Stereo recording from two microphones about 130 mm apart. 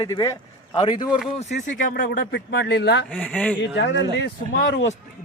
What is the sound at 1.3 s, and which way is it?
Speech, 70° left (ahead or behind).